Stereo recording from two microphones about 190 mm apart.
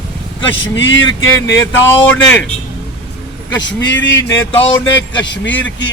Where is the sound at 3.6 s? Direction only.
70° left (ahead or behind).